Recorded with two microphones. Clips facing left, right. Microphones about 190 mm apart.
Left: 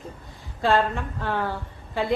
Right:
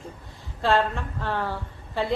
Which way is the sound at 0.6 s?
Centre (ahead or behind).